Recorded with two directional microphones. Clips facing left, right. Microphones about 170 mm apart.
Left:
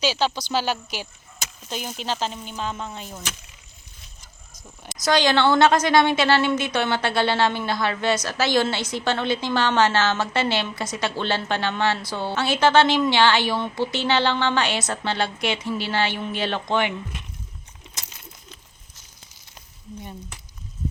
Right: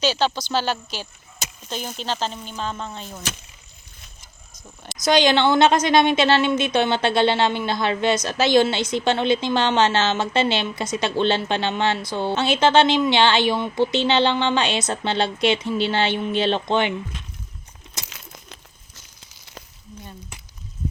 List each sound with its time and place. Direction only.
0.0 s speech: 5° left (ahead or behind)
5.0 s a woman's voice: 20° right (ahead or behind)
18.1 s coin: 90° right
18.9 s a sound: 80° right